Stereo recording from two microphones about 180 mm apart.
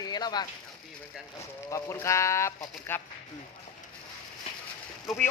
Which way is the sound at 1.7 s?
15° left (ahead or behind).